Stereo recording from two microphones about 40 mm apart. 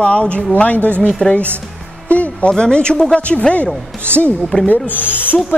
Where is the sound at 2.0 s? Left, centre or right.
Left.